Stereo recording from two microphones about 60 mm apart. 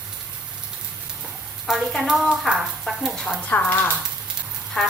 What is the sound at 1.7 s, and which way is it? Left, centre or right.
Stir, centre.